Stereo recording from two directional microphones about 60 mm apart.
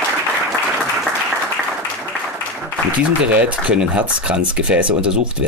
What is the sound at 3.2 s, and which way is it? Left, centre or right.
Speech, right.